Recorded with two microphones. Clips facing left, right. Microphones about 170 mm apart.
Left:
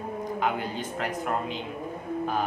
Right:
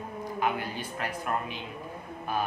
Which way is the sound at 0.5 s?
20° left (ahead or behind).